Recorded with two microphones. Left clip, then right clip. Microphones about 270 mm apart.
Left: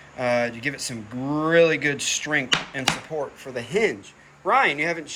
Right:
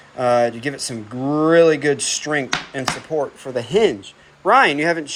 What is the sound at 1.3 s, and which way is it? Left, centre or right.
Speech, right.